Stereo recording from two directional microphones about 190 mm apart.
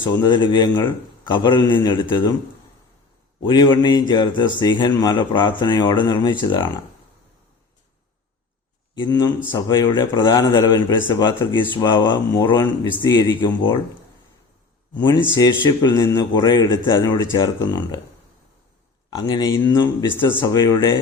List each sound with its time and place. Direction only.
0.0 s speech: 25° left (ahead or behind)
3.4 s speech: 20° left (ahead or behind)
9.0 s speech: 20° left (ahead or behind)
15.4 s speech: 20° left (ahead or behind)
19.1 s speech: 20° left (ahead or behind)